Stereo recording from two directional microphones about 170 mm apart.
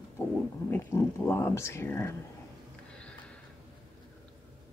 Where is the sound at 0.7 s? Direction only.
15° left (ahead or behind).